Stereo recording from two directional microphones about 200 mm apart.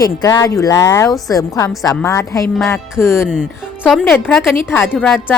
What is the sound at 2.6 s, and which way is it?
Speech, centre (ahead or behind).